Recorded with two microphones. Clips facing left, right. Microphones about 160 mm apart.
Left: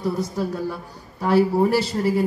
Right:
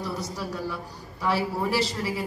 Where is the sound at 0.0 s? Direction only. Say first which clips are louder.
Left 8 dB; 55° left (ahead or behind).